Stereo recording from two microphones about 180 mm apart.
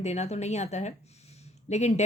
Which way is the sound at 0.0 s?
40° left (ahead or behind).